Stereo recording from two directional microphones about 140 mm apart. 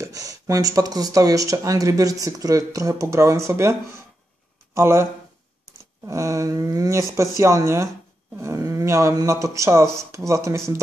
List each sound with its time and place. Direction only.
0.0 s speech: 25° right (ahead or behind)
6.0 s speech: 20° right (ahead or behind)